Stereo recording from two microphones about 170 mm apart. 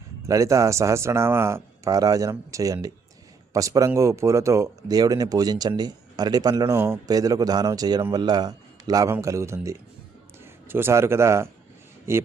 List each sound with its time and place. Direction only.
0.3 s a man's voice: 20° right (ahead or behind)